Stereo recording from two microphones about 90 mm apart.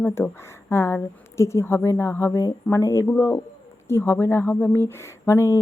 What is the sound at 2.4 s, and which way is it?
Speech, 40° left (ahead or behind).